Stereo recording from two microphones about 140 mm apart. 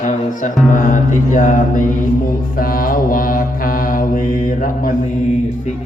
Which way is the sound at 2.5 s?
90° left.